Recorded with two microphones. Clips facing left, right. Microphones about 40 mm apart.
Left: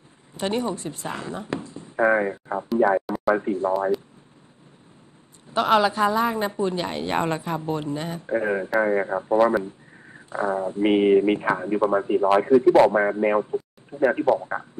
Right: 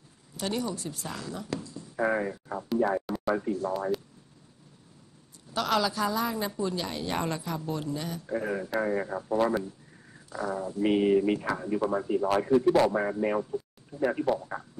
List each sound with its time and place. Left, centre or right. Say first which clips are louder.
0.3 s speech: left 6 dB; left
5.5 s speech: left 8 dB; left